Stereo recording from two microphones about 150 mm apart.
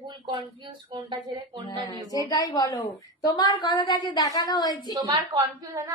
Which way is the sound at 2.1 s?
25° left (ahead or behind).